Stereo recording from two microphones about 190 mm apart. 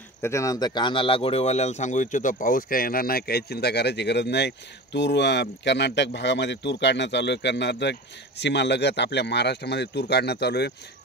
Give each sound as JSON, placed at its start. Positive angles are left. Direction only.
{"t": 0.2, "sound": "speech", "side_deg": 15}